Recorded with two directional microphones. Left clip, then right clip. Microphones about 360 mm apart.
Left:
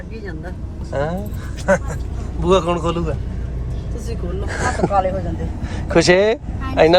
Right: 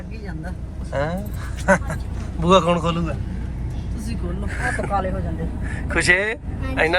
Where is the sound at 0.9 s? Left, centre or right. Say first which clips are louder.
Left 2 dB; centre.